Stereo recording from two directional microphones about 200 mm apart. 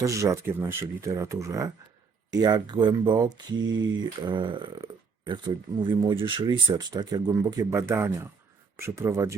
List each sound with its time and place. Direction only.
0.0 s speech: 15° right (ahead or behind)
3.6 s speech: 70° right (ahead or behind)
3.9 s speech: 25° right (ahead or behind)